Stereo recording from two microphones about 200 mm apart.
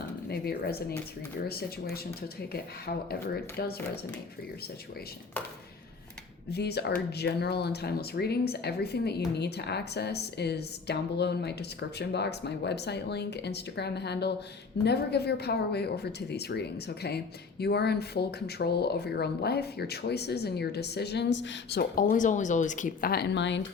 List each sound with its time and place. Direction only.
0.3 s speech: 50° left (ahead or behind)
6.5 s speech: 55° left (ahead or behind)
21.9 s speech: 40° left (ahead or behind); by 23.6 s 65° left (ahead or behind)